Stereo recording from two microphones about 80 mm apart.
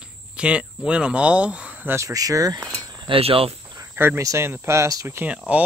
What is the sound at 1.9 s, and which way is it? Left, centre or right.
Speech, right.